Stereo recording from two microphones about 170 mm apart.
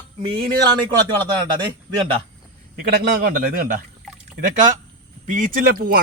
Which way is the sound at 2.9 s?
70° right (ahead or behind).